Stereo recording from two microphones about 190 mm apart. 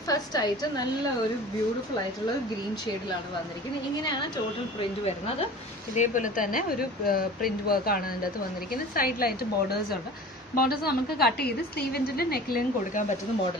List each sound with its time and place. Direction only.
0.1 s a woman's voice: 20° left (ahead or behind)
5.9 s a woman's voice: 40° left (ahead or behind)